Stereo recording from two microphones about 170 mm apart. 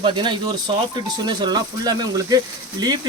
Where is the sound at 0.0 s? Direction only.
30° right (ahead or behind).